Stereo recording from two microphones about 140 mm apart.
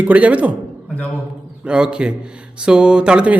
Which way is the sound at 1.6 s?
5° right (ahead or behind).